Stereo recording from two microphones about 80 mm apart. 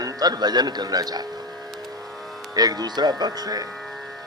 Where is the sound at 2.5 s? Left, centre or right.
Right.